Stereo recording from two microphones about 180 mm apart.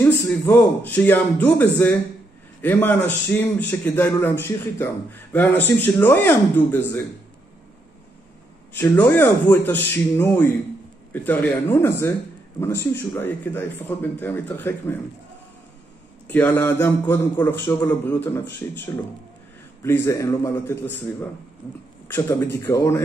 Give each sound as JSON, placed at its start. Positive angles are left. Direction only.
{"t": 0.0, "sound": "a man's voice", "side_deg": 15}
{"t": 2.6, "sound": "a man's voice", "side_deg": 10}
{"t": 8.7, "sound": "a man's voice", "side_deg": 10}
{"t": 16.3, "sound": "a man's voice", "side_deg": 10}
{"t": 22.0, "sound": "a man's voice", "side_deg": 15}